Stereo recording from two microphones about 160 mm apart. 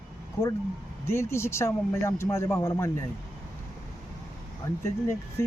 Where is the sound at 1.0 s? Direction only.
15° left (ahead or behind).